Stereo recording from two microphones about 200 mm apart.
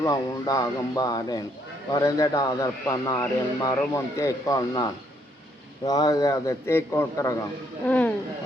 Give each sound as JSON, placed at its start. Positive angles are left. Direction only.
{"t": 0.0, "sound": "a man's voice", "side_deg": 20}